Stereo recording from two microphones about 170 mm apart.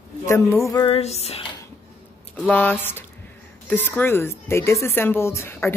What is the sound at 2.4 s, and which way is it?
Speech, 10° left (ahead or behind).